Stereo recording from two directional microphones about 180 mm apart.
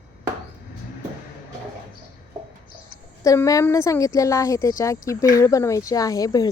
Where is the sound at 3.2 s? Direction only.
20° left (ahead or behind).